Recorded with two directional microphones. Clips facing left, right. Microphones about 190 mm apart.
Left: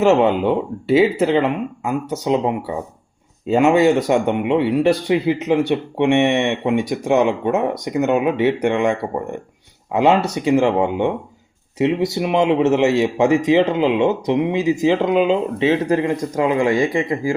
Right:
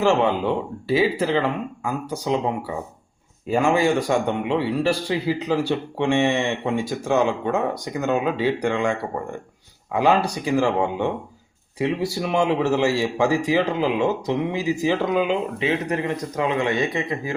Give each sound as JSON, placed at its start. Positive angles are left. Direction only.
{"t": 0.0, "sound": "speech", "side_deg": 20}